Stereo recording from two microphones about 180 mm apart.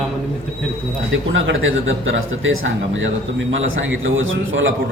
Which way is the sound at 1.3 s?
90° right.